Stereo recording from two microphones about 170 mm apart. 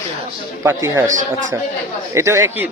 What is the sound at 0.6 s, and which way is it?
Speech, 15° right (ahead or behind).